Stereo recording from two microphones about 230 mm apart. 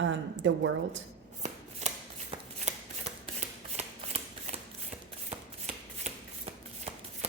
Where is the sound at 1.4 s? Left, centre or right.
Right.